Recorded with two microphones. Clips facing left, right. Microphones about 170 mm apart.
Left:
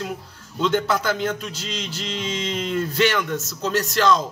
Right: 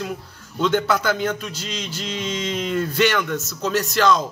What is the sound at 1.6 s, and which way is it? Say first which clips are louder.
Music: right 1 dB; 50° right (ahead or behind).